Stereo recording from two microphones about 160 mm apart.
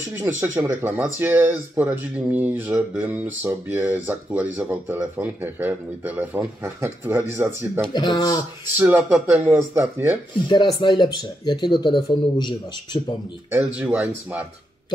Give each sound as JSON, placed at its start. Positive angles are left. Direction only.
{"t": 0.2, "sound": "speech", "side_deg": -15}
{"t": 7.9, "sound": "speech", "side_deg": 25}
{"t": 8.7, "sound": "speech", "side_deg": -10}
{"t": 10.5, "sound": "speech", "side_deg": 30}
{"t": 13.5, "sound": "speech", "side_deg": -10}